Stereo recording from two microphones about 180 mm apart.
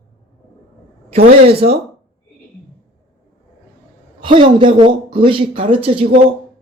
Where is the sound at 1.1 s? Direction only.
60° right (ahead or behind).